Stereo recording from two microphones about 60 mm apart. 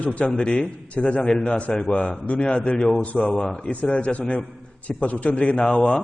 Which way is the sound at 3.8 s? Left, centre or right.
Left.